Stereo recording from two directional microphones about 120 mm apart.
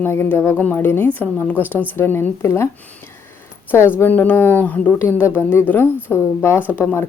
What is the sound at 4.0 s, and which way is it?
Speech, 15° left (ahead or behind).